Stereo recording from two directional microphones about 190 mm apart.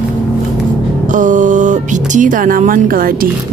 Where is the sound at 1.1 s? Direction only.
40° right (ahead or behind).